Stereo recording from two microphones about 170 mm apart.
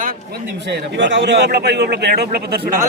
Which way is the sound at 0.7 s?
90° right.